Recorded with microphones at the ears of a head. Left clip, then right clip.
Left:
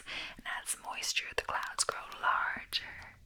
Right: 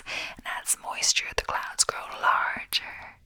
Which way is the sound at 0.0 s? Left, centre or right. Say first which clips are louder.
Right 7 dB; right.